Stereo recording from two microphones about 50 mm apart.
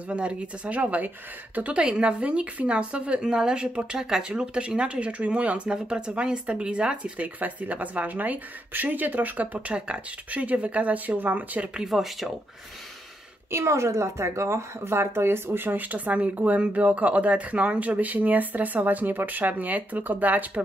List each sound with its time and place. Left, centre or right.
0.1 s speech: right
11.7 s speech: centre
13.5 s a woman's voice: right